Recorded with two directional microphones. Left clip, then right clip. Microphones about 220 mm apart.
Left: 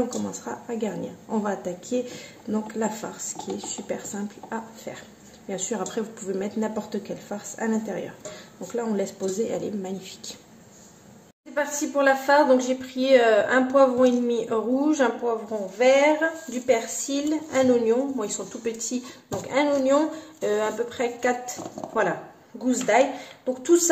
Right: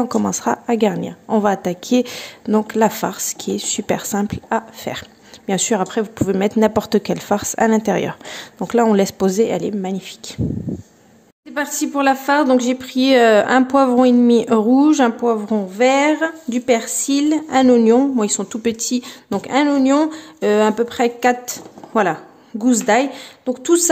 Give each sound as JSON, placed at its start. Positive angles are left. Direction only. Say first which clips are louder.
{"t": 0.2, "sound": "a woman's voice", "louder": "right 13 dB", "side_deg": -45}
{"t": 11.5, "sound": "a woman's voice", "louder": "right 4 dB", "side_deg": -50}